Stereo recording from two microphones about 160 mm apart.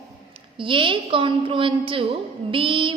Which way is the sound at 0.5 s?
30° right (ahead or behind).